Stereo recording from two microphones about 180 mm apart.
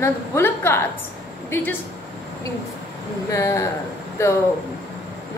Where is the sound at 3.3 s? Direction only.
15° left (ahead or behind).